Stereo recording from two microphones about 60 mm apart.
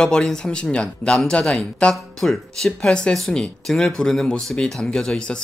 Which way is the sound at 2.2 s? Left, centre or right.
Centre.